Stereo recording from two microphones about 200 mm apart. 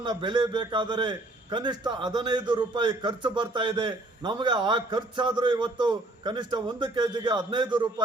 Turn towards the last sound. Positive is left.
turn(degrees=-20)  # may be behind; listen again after turning